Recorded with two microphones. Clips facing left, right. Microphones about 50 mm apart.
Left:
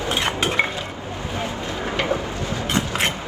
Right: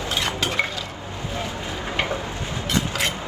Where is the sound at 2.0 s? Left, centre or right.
Left.